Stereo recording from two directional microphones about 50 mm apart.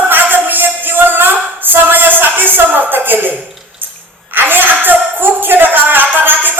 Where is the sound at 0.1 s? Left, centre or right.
Right.